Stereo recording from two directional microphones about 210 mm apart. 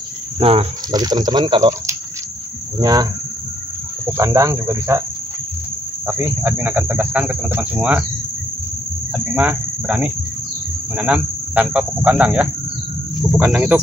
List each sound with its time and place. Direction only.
0.4 s speech: 25° right (ahead or behind)
2.8 s cricket: 20° right (ahead or behind)
6.0 s cricket: 10° right (ahead or behind)
9.3 s speech: 5° right (ahead or behind)
11.0 s cricket: 5° right (ahead or behind)
13.3 s speech: 5° right (ahead or behind)